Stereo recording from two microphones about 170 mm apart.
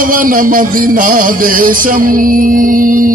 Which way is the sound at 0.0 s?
55° right (ahead or behind).